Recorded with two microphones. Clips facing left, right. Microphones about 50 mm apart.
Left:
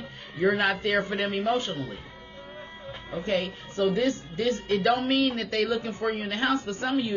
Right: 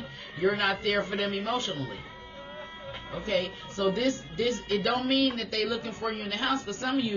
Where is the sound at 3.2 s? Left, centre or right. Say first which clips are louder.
Left 1 dB; left.